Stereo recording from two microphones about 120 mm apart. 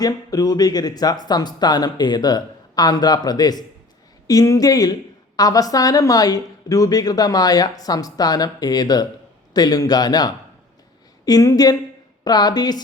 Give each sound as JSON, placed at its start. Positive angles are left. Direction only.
{"t": 0.0, "sound": "speech", "side_deg": 30}